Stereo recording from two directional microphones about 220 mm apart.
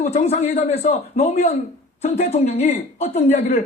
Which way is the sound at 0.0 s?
30° left (ahead or behind).